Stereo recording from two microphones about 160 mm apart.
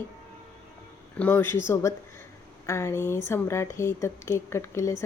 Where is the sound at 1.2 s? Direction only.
10° left (ahead or behind).